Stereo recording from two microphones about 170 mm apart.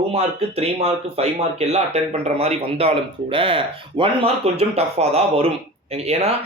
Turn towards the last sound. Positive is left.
turn(degrees=-35)  # may be behind; listen again after turning